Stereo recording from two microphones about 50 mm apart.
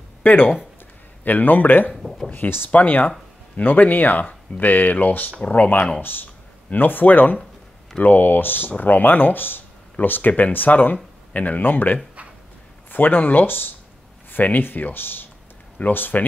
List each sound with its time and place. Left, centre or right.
0.2 s speech: left
2.0 s speech: centre
2.3 s speech: left